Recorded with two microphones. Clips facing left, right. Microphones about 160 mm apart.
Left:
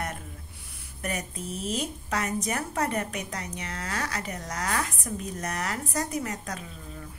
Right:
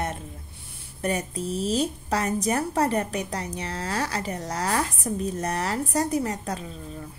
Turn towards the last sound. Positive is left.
turn(degrees=-30)  # may be behind; listen again after turning